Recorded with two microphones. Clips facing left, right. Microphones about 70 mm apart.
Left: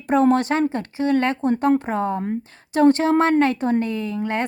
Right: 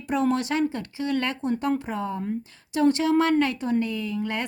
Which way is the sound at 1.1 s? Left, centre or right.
Left.